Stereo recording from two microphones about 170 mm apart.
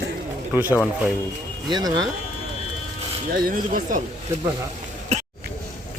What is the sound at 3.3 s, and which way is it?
Speech, 60° right (ahead or behind).